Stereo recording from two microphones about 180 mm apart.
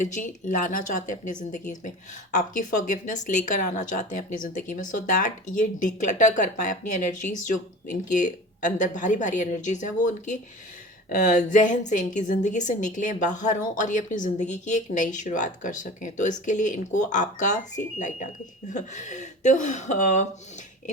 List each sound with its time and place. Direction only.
0.0 s a woman's voice: 45° left (ahead or behind)